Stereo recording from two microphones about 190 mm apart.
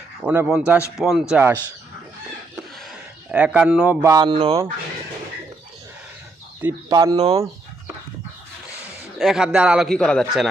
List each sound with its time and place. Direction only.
0.2 s a man's voice: 5° right (ahead or behind)
3.3 s a man's voice: 5° right (ahead or behind)
4.0 s speech: 20° right (ahead or behind)
6.6 s speech: 15° right (ahead or behind)
9.1 s a man's voice: centre (ahead or behind)